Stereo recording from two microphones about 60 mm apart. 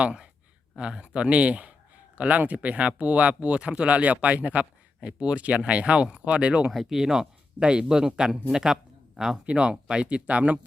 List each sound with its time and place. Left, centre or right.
0.0 s speech: centre
6.7 s speech: centre
9.5 s speech: centre